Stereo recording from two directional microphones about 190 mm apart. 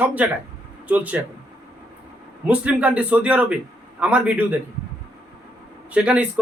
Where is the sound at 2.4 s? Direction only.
5° right (ahead or behind).